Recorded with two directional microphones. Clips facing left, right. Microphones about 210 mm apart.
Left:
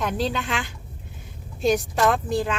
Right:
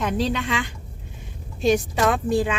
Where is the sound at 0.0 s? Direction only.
Centre (ahead or behind).